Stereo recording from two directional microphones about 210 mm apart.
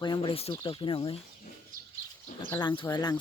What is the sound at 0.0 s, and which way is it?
Speech, 25° left (ahead or behind).